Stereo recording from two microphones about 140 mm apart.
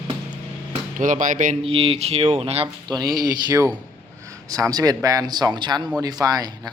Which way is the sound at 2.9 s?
30° right (ahead or behind).